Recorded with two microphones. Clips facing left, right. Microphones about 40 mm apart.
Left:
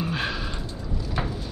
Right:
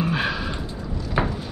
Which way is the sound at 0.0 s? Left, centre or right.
Centre.